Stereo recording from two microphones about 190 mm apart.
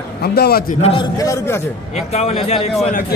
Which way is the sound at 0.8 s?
25° left (ahead or behind).